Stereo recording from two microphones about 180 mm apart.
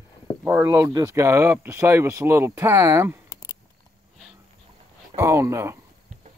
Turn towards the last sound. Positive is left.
turn(degrees=-15)  # may be behind; listen again after turning